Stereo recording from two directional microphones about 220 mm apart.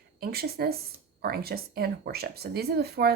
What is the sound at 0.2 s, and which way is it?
Speech, 45° right (ahead or behind).